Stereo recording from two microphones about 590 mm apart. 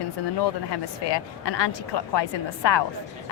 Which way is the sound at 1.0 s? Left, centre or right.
Left.